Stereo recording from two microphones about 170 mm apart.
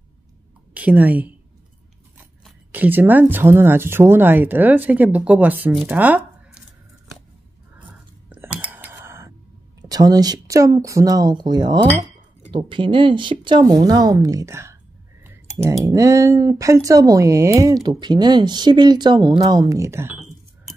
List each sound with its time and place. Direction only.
0.7 s a woman's voice: 10° right (ahead or behind)
2.7 s speech: 10° right (ahead or behind)
7.8 s a sound: 10° right (ahead or behind)
9.8 s speech: 20° right (ahead or behind)